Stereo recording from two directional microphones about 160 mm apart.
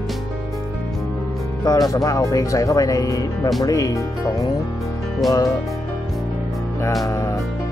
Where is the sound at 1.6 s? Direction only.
25° left (ahead or behind).